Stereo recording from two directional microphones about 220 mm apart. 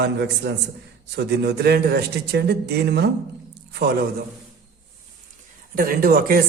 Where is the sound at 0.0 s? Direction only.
50° right (ahead or behind).